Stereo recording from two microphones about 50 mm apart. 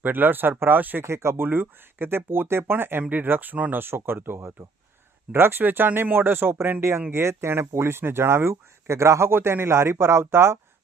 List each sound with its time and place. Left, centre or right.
0.0 s speech: right
1.0 s speech: right
1.4 s speech: right
3.0 s speech: right
9.3 s speech: right